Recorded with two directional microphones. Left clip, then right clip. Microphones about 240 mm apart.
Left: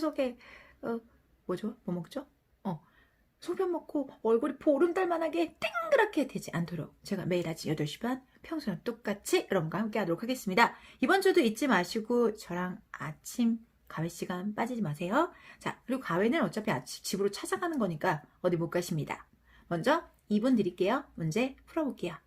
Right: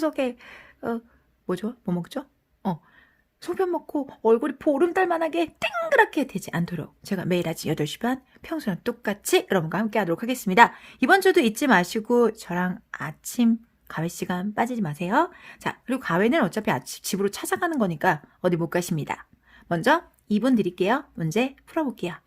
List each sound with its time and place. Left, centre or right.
0.0 s speech: right
3.4 s speech: right